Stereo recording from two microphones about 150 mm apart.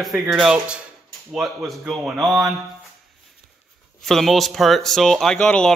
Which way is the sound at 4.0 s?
Centre (ahead or behind).